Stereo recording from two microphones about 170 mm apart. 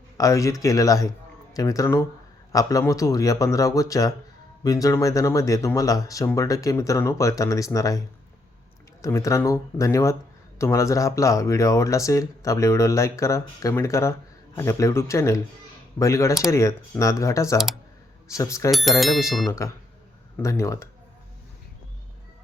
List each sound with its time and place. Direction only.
0.2 s speech: 20° left (ahead or behind)
18.7 s speech: centre (ahead or behind)
19.5 s speech: 15° left (ahead or behind)